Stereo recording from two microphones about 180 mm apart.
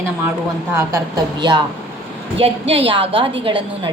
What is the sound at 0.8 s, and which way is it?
A woman's voice, 20° right (ahead or behind).